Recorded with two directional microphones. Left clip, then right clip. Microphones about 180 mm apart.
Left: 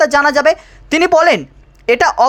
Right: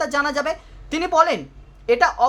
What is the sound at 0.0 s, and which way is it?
Speech, 35° left (ahead or behind).